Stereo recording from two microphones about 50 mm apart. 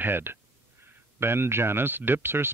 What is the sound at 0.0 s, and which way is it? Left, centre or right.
Speech, right.